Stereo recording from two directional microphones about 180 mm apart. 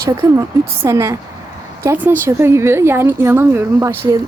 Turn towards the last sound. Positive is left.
turn(degrees=-15)  # may be behind; listen again after turning